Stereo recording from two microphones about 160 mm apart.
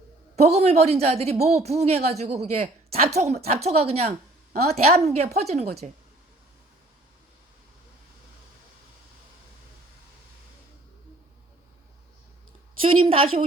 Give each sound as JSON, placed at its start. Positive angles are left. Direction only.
{"t": 0.3, "sound": "a woman's voice", "side_deg": -40}
{"t": 12.8, "sound": "a woman's voice", "side_deg": -35}